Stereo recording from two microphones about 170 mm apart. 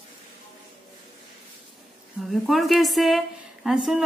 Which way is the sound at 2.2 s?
Centre (ahead or behind).